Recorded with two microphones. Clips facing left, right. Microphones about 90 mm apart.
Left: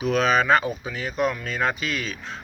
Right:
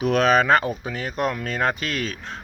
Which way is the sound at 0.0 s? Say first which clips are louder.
Right 2 dB; 60° right (ahead or behind).